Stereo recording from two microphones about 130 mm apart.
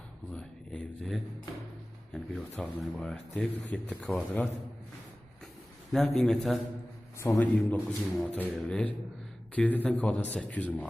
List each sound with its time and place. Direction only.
0.3 s speech: 5° left (ahead or behind)
5.9 s a man's voice: centre (ahead or behind)
7.2 s a man's voice: 20° left (ahead or behind)
7.7 s speech: 10° left (ahead or behind)